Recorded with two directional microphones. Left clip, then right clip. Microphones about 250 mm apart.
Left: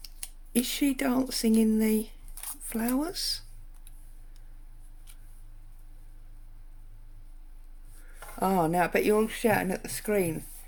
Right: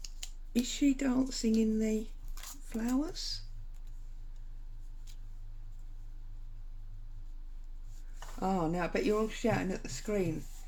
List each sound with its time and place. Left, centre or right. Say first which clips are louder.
0.6 s speech: left 3 dB; left
8.4 s speech: left 8 dB; left